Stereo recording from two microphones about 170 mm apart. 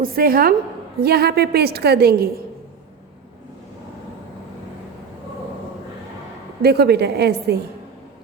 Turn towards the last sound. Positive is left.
turn(degrees=-75)  # may be behind; listen again after turning